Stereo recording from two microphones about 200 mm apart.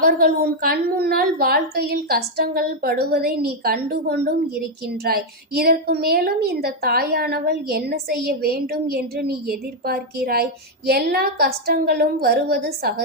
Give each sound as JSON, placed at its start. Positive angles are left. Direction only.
{"t": 0.0, "sound": "a woman's voice", "side_deg": -50}